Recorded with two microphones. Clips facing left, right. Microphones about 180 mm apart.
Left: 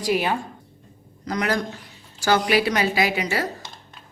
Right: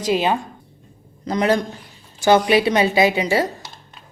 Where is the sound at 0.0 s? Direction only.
20° right (ahead or behind).